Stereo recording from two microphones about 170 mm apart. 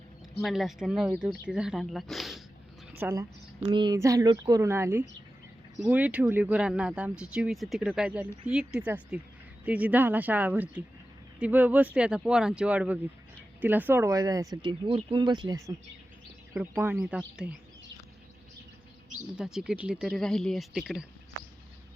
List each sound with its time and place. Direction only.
0.3 s speech: centre (ahead or behind)
3.0 s speech: 20° right (ahead or behind)
19.4 s speech: 5° right (ahead or behind)